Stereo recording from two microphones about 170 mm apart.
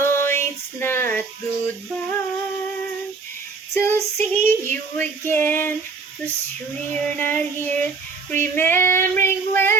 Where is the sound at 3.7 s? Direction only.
15° left (ahead or behind).